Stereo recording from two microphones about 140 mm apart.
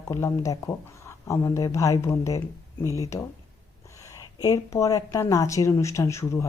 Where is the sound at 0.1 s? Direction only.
20° left (ahead or behind).